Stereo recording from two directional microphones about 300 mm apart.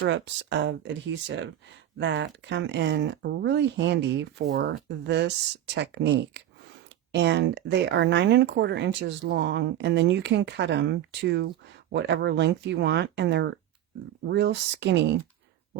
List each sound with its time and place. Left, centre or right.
0.0 s speech: right